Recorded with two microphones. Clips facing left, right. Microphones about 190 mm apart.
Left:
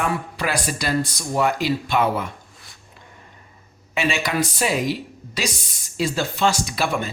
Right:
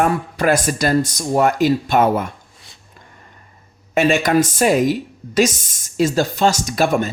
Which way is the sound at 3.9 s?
45° right (ahead or behind).